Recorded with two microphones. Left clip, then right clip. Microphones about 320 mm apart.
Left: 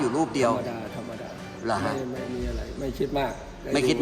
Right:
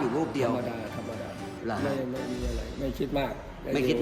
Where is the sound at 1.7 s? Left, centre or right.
Left.